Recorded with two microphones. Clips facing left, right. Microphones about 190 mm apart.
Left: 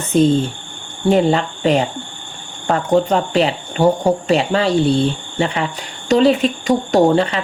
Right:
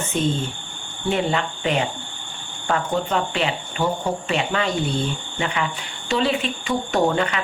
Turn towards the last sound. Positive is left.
turn(degrees=35)  # may be behind; listen again after turning